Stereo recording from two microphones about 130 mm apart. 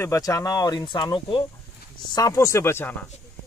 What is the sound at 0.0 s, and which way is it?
Speech, 25° left (ahead or behind).